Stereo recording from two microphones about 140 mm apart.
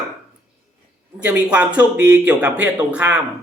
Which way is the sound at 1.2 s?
10° right (ahead or behind).